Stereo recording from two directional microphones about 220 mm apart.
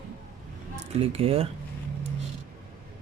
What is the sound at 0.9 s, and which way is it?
Speech, 25° right (ahead or behind).